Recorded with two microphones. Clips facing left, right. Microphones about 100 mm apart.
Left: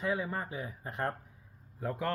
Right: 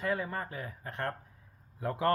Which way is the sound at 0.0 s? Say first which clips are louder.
Even; 10° left (ahead or behind).